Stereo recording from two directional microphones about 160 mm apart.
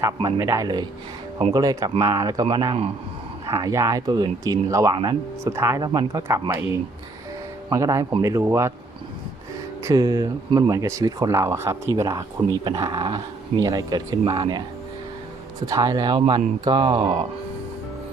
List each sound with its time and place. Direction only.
0.3 s speech: 20° right (ahead or behind)
9.8 s speech: 20° right (ahead or behind)
15.6 s speech: 25° right (ahead or behind)